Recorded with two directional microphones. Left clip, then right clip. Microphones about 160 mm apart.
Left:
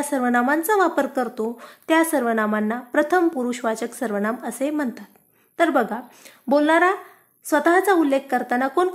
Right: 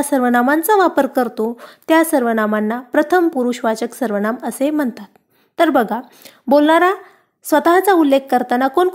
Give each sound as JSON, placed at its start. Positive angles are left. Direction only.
{"t": 0.0, "sound": "speech", "side_deg": -40}